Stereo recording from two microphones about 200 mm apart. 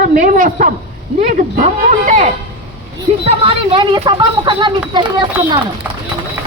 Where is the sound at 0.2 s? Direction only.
40° right (ahead or behind).